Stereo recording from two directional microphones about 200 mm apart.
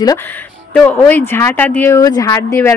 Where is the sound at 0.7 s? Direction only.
5° left (ahead or behind).